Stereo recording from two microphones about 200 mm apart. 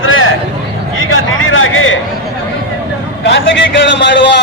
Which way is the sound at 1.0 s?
80° left.